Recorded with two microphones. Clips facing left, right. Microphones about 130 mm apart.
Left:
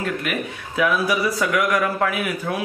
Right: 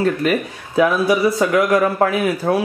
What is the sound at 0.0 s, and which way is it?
Speech, 35° right (ahead or behind).